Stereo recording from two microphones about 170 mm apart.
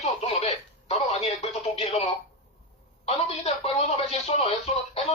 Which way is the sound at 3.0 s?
40° left (ahead or behind).